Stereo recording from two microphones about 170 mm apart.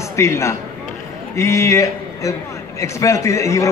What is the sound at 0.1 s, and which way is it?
A man's voice, 15° left (ahead or behind).